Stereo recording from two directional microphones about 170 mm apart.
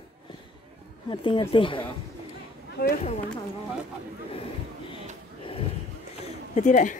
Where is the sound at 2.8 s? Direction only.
65° left (ahead or behind).